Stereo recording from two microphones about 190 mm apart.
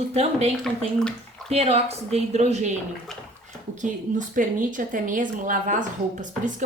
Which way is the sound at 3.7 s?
40° right (ahead or behind).